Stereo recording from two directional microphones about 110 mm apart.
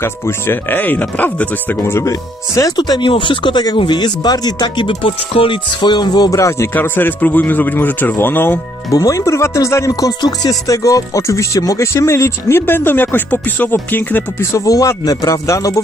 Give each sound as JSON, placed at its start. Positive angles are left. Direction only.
{"t": 0.0, "sound": "speech", "side_deg": 20}
{"t": 6.7, "sound": "speech", "side_deg": 20}
{"t": 8.9, "sound": "music", "side_deg": 30}
{"t": 14.5, "sound": "speech", "side_deg": 30}